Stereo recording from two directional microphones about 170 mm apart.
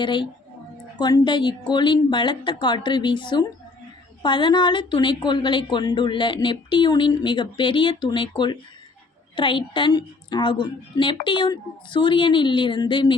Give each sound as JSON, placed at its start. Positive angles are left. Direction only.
{"t": 0.0, "sound": "a woman's voice", "side_deg": 25}